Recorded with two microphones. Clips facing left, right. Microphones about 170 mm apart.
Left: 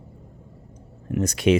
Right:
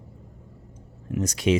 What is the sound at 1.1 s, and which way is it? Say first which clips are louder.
Speech: left 3 dB; 60° left (ahead or behind).